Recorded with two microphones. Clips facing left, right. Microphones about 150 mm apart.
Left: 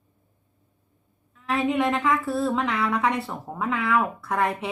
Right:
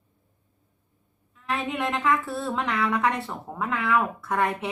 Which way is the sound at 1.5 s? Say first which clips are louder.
Left 5 dB; centre (ahead or behind).